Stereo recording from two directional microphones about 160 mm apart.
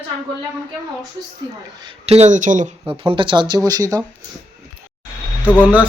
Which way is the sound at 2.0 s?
40° right (ahead or behind).